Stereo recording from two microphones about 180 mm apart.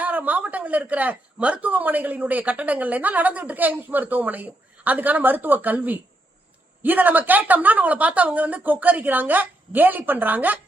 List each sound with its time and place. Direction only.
0.0 s a man's voice: 10° right (ahead or behind)